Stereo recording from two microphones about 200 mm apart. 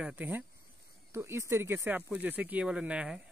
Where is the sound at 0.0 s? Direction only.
10° right (ahead or behind).